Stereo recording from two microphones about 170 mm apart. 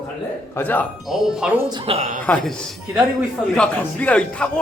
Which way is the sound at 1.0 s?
Centre (ahead or behind).